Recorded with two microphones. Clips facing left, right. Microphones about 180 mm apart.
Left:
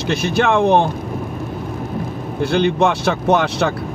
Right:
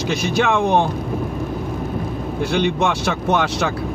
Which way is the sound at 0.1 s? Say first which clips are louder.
Left 3 dB; 60° left (ahead or behind).